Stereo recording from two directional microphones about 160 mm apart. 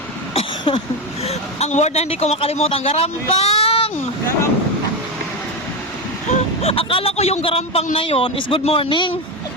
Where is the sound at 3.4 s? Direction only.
40° left (ahead or behind).